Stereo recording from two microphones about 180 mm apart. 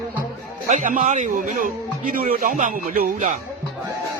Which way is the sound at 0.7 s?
45° right (ahead or behind).